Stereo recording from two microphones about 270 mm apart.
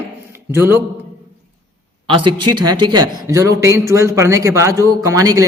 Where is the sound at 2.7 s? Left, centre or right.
Centre.